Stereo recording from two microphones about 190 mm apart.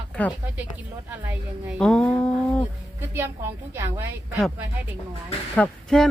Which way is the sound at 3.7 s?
10° right (ahead or behind).